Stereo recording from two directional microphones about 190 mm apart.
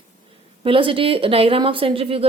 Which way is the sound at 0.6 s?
30° right (ahead or behind).